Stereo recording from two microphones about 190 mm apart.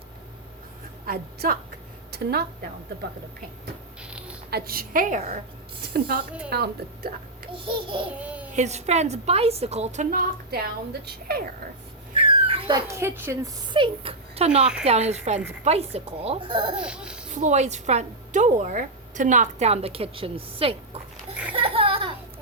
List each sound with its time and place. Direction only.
1.0 s a woman's voice: 50° right (ahead or behind)
2.1 s a sound: 55° right (ahead or behind)
4.0 s mechanisms: 5° right (ahead or behind)
4.5 s a woman's voice: 50° right (ahead or behind)
5.9 s a woman's voice: 55° right (ahead or behind)
7.5 s babbling: 25° right (ahead or behind)
8.2 s a sound: 5° right (ahead or behind)
8.5 s a woman's voice: 35° right (ahead or behind); by 11.4 s 55° right (ahead or behind)
12.1 s dog: 30° right (ahead or behind)
12.9 s a woman's voice: 15° right (ahead or behind)
13.7 s a woman's voice: 30° right (ahead or behind)
16.7 s speech: 5° right (ahead or behind)
17.3 s speech: 40° right (ahead or behind)
21.5 s a sound: 30° right (ahead or behind)